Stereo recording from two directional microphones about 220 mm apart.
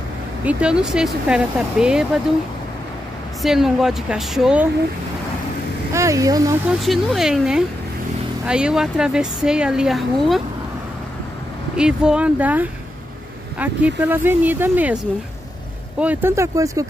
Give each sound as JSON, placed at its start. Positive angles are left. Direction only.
{"t": 0.5, "sound": "speech", "side_deg": -5}
{"t": 3.4, "sound": "speech", "side_deg": 0}
{"t": 5.9, "sound": "speech", "side_deg": -15}
{"t": 6.7, "sound": "speech", "side_deg": 0}
{"t": 11.7, "sound": "speech", "side_deg": -5}
{"t": 16.0, "sound": "speech", "side_deg": -10}